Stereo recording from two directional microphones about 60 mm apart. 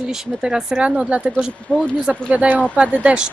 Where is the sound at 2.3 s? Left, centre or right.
Right.